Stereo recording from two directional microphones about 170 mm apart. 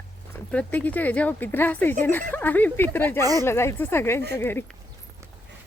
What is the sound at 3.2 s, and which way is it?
Speech, 20° right (ahead or behind).